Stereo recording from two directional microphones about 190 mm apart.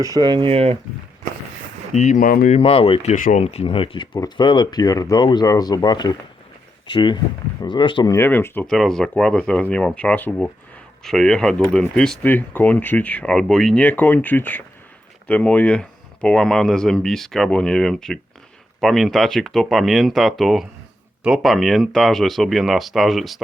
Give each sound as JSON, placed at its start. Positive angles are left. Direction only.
{"t": 0.0, "sound": "speech", "side_deg": -20}
{"t": 1.9, "sound": "speech", "side_deg": 40}
{"t": 2.6, "sound": "speech", "side_deg": 30}